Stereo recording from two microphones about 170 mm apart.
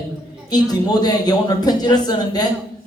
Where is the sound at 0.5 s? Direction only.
25° left (ahead or behind).